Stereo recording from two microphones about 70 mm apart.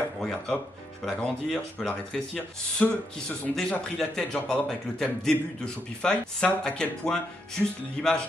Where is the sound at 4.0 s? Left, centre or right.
Centre.